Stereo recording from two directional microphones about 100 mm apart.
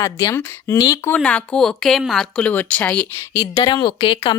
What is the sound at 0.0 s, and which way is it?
Speech, 35° left (ahead or behind).